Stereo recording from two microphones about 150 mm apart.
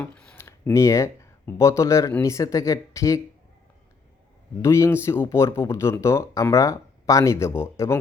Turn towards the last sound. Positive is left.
turn(degrees=15)  # may be behind; listen again after turning